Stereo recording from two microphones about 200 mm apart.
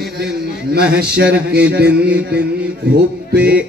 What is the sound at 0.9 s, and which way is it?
Music, 50° right (ahead or behind).